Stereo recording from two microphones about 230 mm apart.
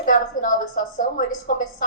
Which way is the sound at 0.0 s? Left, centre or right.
Left.